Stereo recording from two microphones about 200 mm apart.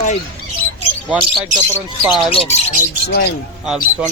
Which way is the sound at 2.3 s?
30° left (ahead or behind).